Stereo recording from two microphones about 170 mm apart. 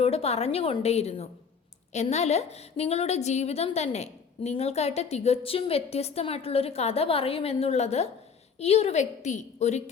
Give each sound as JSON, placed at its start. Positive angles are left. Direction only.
{"t": 0.0, "sound": "a woman's voice", "side_deg": 35}